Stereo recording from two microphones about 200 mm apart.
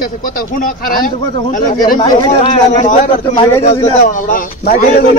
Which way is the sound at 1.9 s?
25° left (ahead or behind).